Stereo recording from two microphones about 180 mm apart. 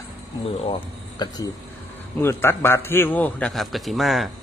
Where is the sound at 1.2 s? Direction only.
25° left (ahead or behind).